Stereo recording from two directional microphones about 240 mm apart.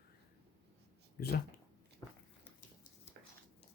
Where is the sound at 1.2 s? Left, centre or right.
Left.